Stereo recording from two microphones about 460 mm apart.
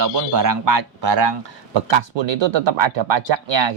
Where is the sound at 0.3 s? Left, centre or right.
Right.